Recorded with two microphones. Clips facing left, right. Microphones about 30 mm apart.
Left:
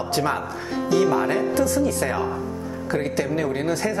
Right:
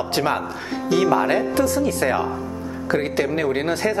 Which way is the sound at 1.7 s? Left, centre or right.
Right.